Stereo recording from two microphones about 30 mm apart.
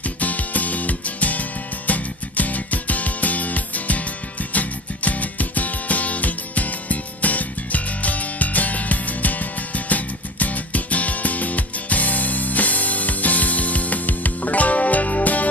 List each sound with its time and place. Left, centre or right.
0.0 s music: left